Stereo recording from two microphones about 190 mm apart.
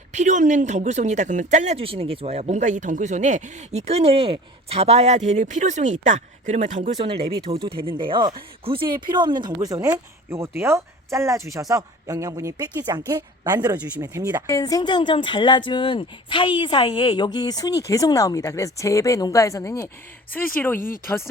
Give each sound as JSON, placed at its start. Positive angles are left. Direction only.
{"t": 0.1, "sound": "speech", "side_deg": -40}
{"t": 7.0, "sound": "speech", "side_deg": -30}
{"t": 14.4, "sound": "a woman's voice", "side_deg": 20}